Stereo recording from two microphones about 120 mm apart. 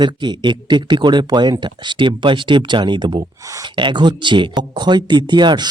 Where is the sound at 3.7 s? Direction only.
40° right (ahead or behind).